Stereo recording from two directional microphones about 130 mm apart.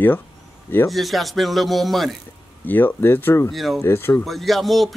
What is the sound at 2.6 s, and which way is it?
Speech, 15° left (ahead or behind).